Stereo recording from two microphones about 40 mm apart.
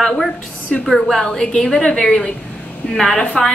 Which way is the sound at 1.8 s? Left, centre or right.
Left.